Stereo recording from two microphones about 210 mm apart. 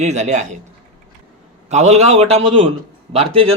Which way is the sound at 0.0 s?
35° right (ahead or behind).